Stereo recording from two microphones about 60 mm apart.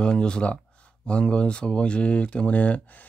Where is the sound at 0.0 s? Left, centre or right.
Centre.